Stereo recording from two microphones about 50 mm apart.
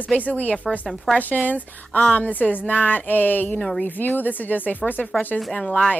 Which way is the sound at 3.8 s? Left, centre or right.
Left.